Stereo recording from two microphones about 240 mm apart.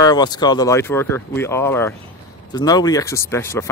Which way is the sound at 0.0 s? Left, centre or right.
Centre.